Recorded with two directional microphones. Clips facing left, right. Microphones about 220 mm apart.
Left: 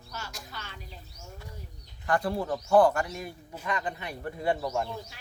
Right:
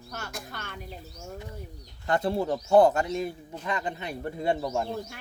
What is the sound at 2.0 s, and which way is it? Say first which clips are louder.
Speech: right 2 dB; 25° right (ahead or behind).